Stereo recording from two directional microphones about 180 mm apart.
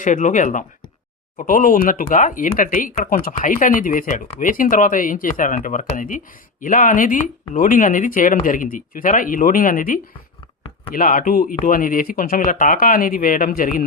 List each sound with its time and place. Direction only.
0.0 s speech: 45° left (ahead or behind)